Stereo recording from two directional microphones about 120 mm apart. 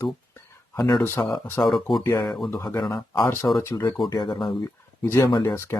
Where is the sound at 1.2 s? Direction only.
25° left (ahead or behind).